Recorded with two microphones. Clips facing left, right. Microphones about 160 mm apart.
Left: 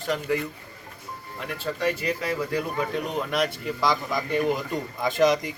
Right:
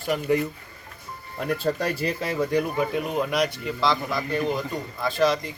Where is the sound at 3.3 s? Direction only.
Centre (ahead or behind).